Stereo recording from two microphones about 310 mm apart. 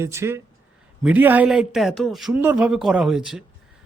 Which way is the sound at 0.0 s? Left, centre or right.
Centre.